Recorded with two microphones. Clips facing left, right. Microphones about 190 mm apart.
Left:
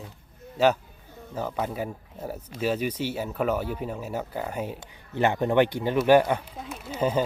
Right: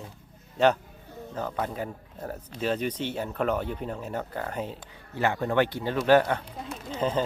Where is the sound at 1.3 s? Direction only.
10° left (ahead or behind).